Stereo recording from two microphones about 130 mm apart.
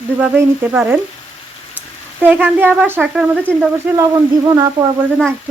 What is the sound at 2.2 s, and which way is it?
Speech, 15° right (ahead or behind).